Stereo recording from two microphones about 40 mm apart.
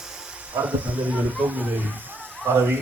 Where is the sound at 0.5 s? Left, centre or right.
Right.